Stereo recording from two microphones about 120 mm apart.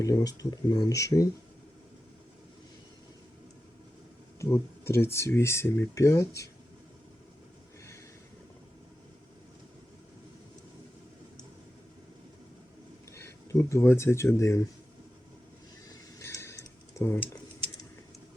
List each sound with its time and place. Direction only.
0.0 s speech: 30° left (ahead or behind)
4.4 s speech: 20° left (ahead or behind)
13.1 s speech: 25° left (ahead or behind)
15.9 s a sound: 25° left (ahead or behind)
17.0 s speech: 20° left (ahead or behind)